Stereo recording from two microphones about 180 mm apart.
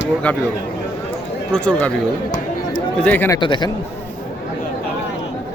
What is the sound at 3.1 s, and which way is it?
Speech, 10° left (ahead or behind).